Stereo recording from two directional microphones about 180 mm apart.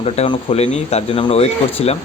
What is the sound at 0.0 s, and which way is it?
Speech, 35° left (ahead or behind).